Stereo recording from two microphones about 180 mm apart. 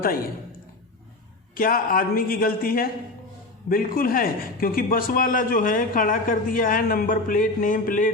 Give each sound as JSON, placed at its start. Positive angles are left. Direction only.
{"t": 1.5, "sound": "a man's voice", "side_deg": 50}